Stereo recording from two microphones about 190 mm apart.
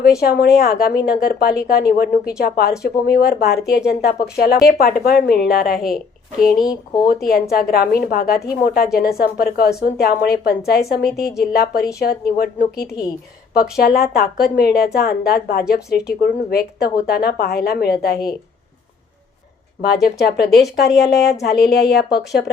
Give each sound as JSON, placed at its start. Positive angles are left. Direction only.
{"t": 0.2, "sound": "a woman's voice", "side_deg": 55}
{"t": 7.1, "sound": "a woman's voice", "side_deg": 50}
{"t": 19.8, "sound": "a woman's voice", "side_deg": 55}